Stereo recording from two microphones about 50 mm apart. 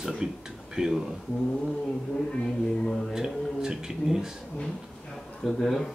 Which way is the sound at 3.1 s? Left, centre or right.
Centre.